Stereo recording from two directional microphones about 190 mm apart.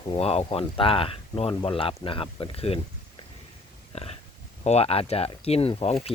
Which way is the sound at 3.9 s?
35° left (ahead or behind).